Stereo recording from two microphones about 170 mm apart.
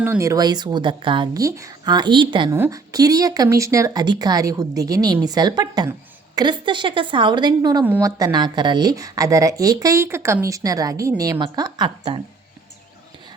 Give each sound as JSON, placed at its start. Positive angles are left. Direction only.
{"t": 0.0, "sound": "speech", "side_deg": -15}
{"t": 2.5, "sound": "speech", "side_deg": -20}